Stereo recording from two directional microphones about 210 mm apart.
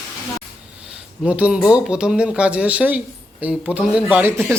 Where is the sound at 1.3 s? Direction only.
5° right (ahead or behind).